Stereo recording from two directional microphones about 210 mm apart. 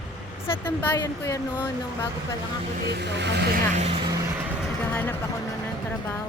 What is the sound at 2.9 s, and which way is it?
Speech, 55° right (ahead or behind).